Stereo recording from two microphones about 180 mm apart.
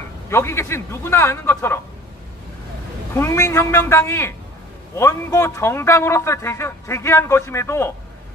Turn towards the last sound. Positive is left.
turn(degrees=15)  # may be behind; listen again after turning